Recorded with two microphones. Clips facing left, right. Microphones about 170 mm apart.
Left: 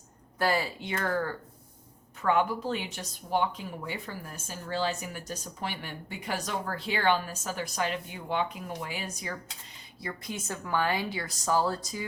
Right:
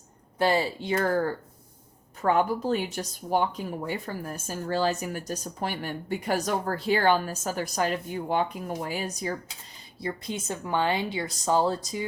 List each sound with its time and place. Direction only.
0.3 s speech: 25° right (ahead or behind)
10.0 s a woman's voice: 25° right (ahead or behind)